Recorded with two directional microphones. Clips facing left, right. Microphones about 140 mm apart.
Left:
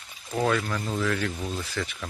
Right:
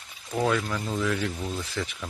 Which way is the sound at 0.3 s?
5° right (ahead or behind).